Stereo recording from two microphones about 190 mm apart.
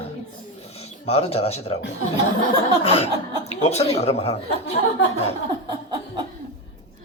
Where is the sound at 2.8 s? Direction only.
30° left (ahead or behind).